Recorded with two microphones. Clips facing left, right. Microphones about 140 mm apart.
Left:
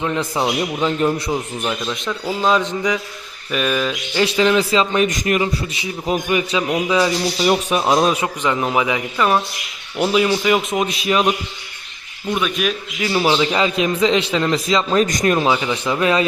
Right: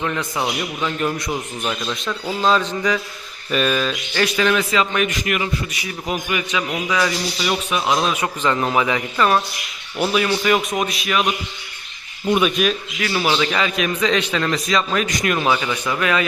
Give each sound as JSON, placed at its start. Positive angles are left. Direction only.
{"t": 0.2, "sound": "a man's voice", "side_deg": 30}
{"t": 1.6, "sound": "speech", "side_deg": 5}
{"t": 2.4, "sound": "a man's voice", "side_deg": 15}
{"t": 3.5, "sound": "a man's voice", "side_deg": 5}
{"t": 4.3, "sound": "a man's voice", "side_deg": 25}
{"t": 6.7, "sound": "a man's voice", "side_deg": 20}
{"t": 7.4, "sound": "a man's voice", "side_deg": 40}
{"t": 8.4, "sound": "a man's voice", "side_deg": 15}
{"t": 13.0, "sound": "a man's voice", "side_deg": 20}
{"t": 15.0, "sound": "a man's voice", "side_deg": 40}
{"t": 15.4, "sound": "a man's voice", "side_deg": 20}